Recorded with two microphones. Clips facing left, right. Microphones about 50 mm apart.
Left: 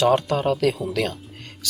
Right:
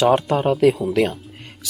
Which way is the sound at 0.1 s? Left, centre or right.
Centre.